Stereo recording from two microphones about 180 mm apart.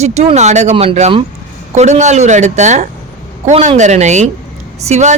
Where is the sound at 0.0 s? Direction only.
35° right (ahead or behind).